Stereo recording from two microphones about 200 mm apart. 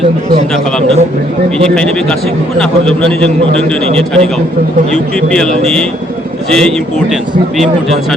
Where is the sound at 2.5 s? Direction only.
5° left (ahead or behind).